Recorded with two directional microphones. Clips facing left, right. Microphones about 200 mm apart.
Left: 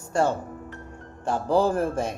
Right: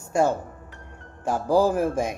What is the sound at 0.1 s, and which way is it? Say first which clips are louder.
Speech: right 2 dB; 10° right (ahead or behind).